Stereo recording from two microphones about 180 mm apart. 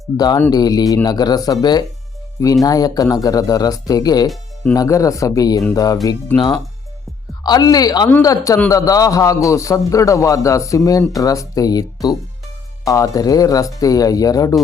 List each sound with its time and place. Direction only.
0.2 s a man's voice: 20° left (ahead or behind)
7.4 s a man's voice: 20° left (ahead or behind)